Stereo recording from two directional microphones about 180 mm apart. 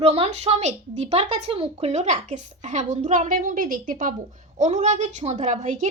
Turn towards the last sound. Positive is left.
turn(degrees=-40)  # may be behind; listen again after turning